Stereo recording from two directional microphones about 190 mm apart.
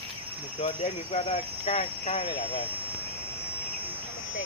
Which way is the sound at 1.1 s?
30° left (ahead or behind).